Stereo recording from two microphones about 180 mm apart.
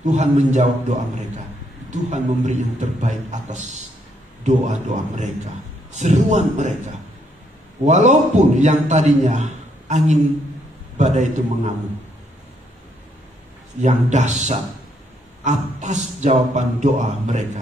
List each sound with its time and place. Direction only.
0.0 s a man's voice: 40° right (ahead or behind)
13.7 s a man's voice: 40° right (ahead or behind)